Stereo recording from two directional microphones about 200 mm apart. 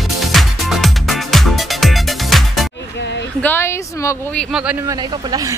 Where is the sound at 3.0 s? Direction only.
60° left (ahead or behind).